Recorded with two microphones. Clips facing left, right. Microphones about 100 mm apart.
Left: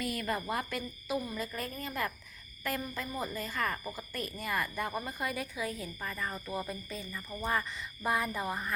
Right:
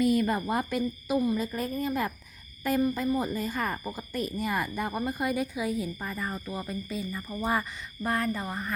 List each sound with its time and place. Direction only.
0.0 s a woman's voice: 20° right (ahead or behind)
8.0 s speech: 10° left (ahead or behind)